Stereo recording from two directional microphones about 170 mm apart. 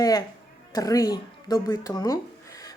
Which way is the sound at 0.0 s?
20° left (ahead or behind).